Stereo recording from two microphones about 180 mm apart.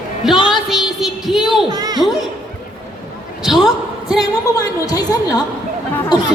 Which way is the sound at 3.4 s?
Centre (ahead or behind).